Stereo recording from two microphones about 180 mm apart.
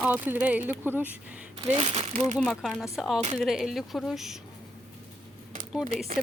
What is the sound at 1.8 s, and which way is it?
Speech, 35° right (ahead or behind).